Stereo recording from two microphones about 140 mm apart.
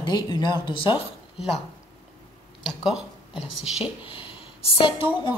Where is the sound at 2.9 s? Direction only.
5° right (ahead or behind).